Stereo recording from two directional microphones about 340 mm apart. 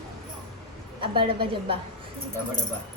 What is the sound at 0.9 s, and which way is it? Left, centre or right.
Speech, centre.